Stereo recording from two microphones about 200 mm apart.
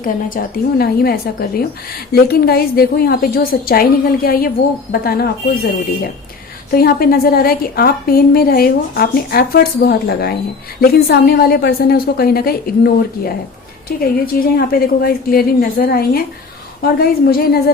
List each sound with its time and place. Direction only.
0.0 s a woman's voice: 45° left (ahead or behind)
6.7 s a woman's voice: 45° left (ahead or behind)